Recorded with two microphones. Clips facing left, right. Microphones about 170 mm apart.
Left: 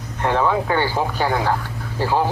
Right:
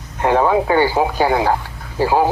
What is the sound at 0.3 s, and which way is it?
Speech, 50° right (ahead or behind).